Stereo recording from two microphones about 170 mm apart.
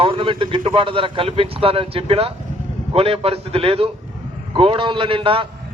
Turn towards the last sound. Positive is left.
turn(degrees=-30)  # may be behind; listen again after turning